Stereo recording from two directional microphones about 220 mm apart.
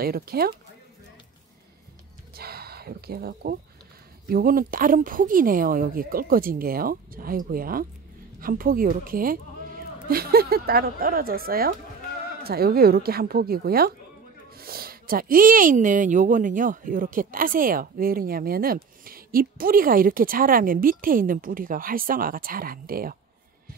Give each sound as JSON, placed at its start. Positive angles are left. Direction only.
{"t": 0.0, "sound": "a woman's voice", "side_deg": -45}
{"t": 2.3, "sound": "a sound", "side_deg": -45}
{"t": 4.3, "sound": "a woman's voice", "side_deg": -40}